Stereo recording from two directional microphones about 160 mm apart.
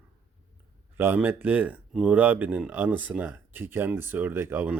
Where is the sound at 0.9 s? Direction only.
15° right (ahead or behind).